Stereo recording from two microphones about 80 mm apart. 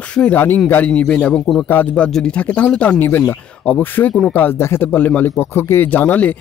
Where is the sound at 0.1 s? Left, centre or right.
Centre.